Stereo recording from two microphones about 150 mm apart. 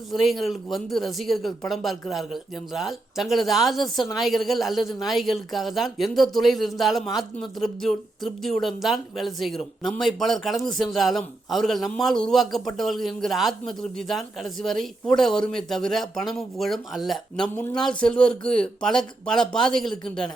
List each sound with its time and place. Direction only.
0.1 s speech: centre (ahead or behind)